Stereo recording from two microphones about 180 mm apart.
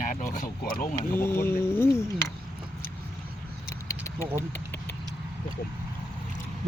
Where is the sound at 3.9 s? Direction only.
15° left (ahead or behind).